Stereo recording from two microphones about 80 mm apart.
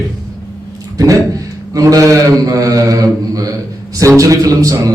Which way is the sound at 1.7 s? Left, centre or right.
Right.